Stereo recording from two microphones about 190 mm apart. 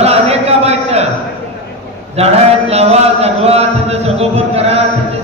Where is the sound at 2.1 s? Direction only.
35° right (ahead or behind).